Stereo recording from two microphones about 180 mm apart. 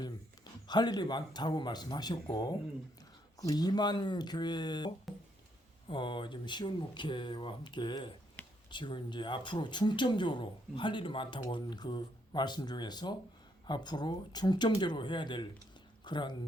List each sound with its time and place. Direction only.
0.7 s speech: 25° left (ahead or behind)
5.1 s music: centre (ahead or behind)
5.9 s speech: 25° left (ahead or behind)